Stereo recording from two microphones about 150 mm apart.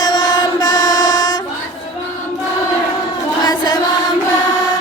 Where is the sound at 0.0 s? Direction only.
30° left (ahead or behind).